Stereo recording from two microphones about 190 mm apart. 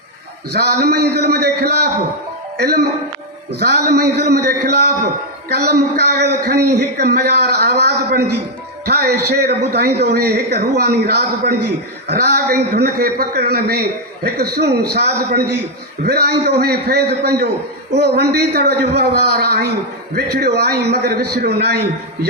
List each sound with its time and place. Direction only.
0.5 s a man's voice: 60° right (ahead or behind)